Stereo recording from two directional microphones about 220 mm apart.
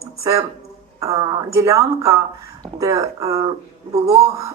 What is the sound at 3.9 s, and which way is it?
Speech, 30° right (ahead or behind).